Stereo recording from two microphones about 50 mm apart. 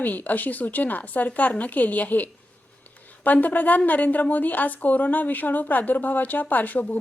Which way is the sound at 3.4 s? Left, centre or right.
Left.